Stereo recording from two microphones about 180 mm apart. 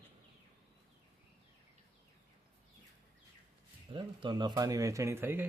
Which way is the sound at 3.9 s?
25° right (ahead or behind).